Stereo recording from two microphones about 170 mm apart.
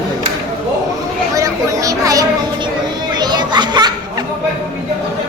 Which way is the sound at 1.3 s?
20° right (ahead or behind).